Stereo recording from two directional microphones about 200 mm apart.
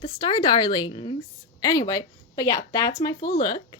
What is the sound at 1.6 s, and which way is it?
Speech, 15° left (ahead or behind).